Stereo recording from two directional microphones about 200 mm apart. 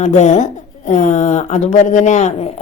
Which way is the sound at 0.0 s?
35° left (ahead or behind).